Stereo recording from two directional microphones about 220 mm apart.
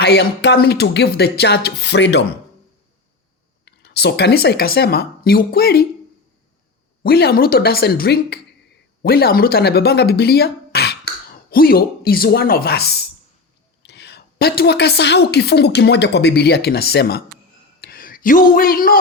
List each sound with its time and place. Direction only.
0.0 s a woman's voice: 50° left (ahead or behind)
3.7 s a woman's voice: 50° left (ahead or behind)
7.0 s a woman's voice: 45° left (ahead or behind)
17.7 s a sound: 45° left (ahead or behind)